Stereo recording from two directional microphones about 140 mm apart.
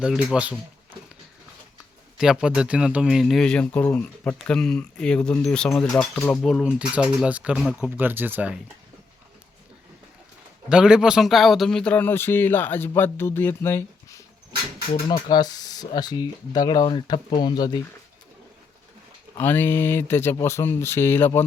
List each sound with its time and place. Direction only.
0.0 s speech: 5° right (ahead or behind)
2.1 s speech: 5° right (ahead or behind)
10.7 s a man's voice: 5° right (ahead or behind); by 14.2 s 15° left (ahead or behind)
15.0 s speech: 30° left (ahead or behind)
19.4 s a man's voice: 15° left (ahead or behind)